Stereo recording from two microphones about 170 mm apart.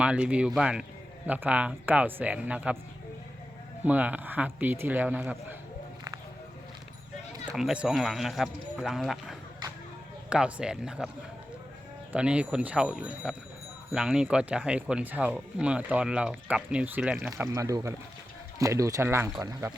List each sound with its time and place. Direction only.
0.0 s speech: 5° right (ahead or behind)
3.8 s speech: 10° right (ahead or behind)
7.5 s speech: 5° right (ahead or behind)
12.1 s speech: 5° right (ahead or behind)